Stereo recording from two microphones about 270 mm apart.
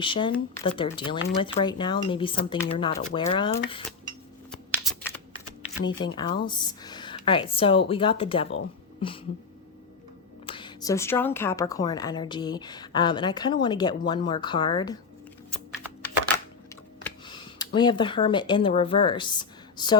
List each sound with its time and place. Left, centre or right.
0.0 s speech: centre
4.7 s computer keyboard: centre
5.6 s speech: centre
9.0 s a sound: centre
10.4 s speech: centre
17.2 s speech: centre